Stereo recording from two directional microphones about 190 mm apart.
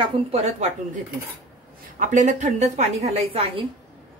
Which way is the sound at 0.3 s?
35° right (ahead or behind).